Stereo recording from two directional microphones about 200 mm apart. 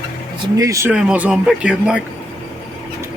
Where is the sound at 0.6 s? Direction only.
15° right (ahead or behind).